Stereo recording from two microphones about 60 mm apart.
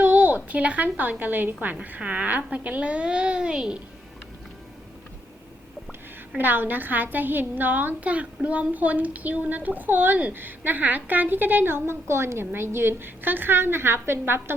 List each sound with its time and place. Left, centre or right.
0.0 s a sound: right
1.2 s a woman's voice: right; by 3.8 s centre
6.3 s a woman's voice: right